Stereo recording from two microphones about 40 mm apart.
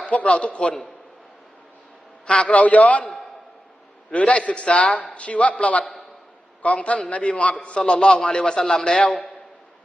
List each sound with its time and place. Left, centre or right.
0.0 s a man's voice: left
2.2 s a man's voice: left
2.5 s a man's voice: left
3.0 s a sound: centre
4.1 s a man's voice: left